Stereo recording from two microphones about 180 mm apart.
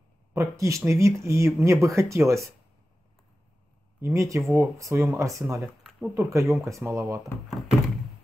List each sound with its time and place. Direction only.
0.3 s speech: 15° right (ahead or behind)
4.0 s speech: 15° right (ahead or behind)
4.4 s speech: centre (ahead or behind)
4.7 s speech: 15° right (ahead or behind)
5.6 s speech: centre (ahead or behind)
6.1 s speech: 15° right (ahead or behind)